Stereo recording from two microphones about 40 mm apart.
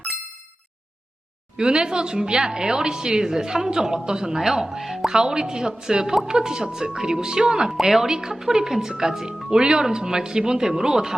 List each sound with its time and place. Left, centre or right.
1.5 s a woman's voice: right
7.7 s a woman's voice: centre